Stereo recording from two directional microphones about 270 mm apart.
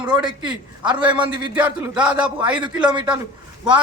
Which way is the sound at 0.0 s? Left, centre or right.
Centre.